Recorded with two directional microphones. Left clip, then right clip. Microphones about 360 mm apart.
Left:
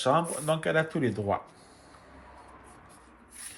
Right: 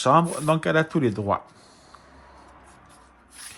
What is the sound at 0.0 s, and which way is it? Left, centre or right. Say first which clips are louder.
Speech: right 7 dB; centre.